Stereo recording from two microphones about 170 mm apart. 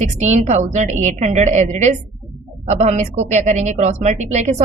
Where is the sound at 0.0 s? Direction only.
40° right (ahead or behind).